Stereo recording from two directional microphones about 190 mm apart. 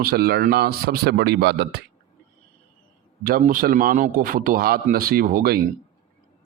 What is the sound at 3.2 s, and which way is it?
A man's voice, 50° right (ahead or behind).